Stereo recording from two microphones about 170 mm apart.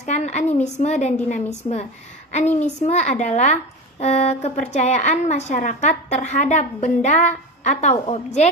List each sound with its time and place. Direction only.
0.0 s a woman's voice: 40° left (ahead or behind)